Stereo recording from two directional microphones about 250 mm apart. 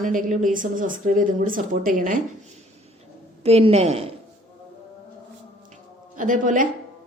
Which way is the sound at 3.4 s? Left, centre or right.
Right.